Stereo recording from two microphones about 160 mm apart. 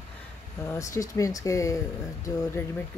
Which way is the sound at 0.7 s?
20° left (ahead or behind).